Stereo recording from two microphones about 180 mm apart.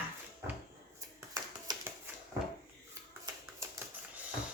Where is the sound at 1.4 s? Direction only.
20° right (ahead or behind).